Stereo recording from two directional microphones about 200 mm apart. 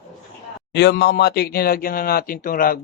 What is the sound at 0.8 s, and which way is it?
Speech, 55° left (ahead or behind).